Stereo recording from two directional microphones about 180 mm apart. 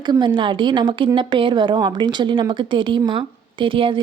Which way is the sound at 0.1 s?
25° right (ahead or behind).